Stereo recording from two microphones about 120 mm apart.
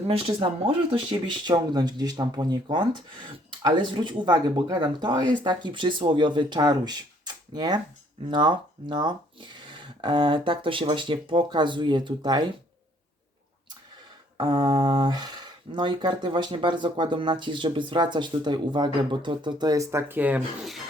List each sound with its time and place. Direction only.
0.1 s speech: 50° right (ahead or behind)
14.3 s speech: 40° right (ahead or behind); by 20.7 s 15° right (ahead or behind)